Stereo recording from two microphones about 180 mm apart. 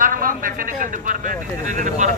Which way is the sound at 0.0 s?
50° right (ahead or behind).